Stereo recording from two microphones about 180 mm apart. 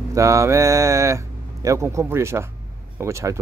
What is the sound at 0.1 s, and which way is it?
Speech, 15° right (ahead or behind).